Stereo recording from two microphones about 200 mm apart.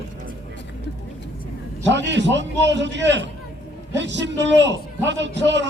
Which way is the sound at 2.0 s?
60° right (ahead or behind).